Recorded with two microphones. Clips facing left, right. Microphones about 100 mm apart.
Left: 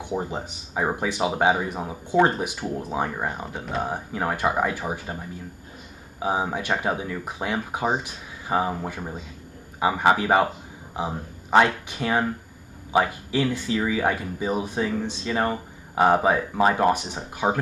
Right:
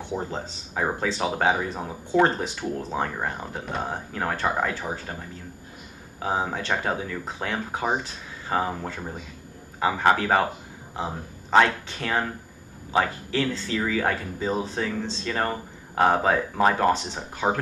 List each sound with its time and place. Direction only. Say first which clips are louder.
0.0 s speech: left 2 dB; 15° left (ahead or behind)
11.5 s speech: left 1 dB; 15° left (ahead or behind)